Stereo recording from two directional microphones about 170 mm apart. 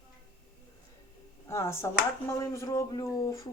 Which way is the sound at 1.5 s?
15° left (ahead or behind).